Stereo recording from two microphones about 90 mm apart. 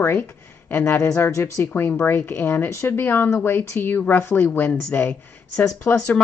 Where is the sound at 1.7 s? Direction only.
25° left (ahead or behind).